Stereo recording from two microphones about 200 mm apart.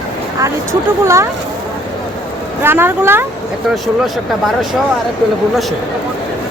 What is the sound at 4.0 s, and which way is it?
Speech, centre (ahead or behind).